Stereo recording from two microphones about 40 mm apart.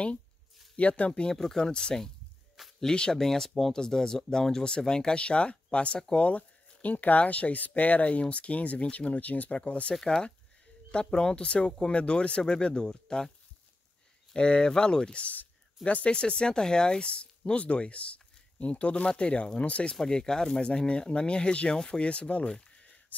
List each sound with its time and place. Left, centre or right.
0.7 s speech: left
1.3 s speech: centre
1.7 s speech: left
10.0 s speech: centre
14.3 s speech: left
20.0 s speech: centre
20.6 s speech: left
22.0 s speech: left